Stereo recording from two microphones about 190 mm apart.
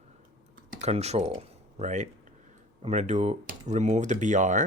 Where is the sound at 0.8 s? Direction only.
35° right (ahead or behind).